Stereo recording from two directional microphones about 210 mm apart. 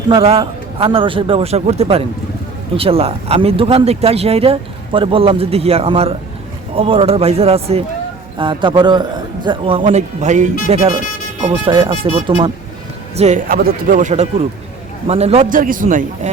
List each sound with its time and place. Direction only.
0.1 s speech: 25° right (ahead or behind)